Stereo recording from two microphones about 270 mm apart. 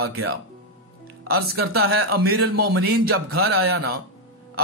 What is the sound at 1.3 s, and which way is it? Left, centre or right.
Speech, right.